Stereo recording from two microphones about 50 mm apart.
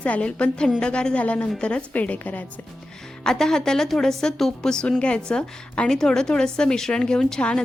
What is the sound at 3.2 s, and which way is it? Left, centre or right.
A woman's voice, centre.